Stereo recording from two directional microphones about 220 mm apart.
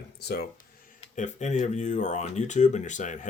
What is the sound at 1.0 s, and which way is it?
Speech, 35° left (ahead or behind).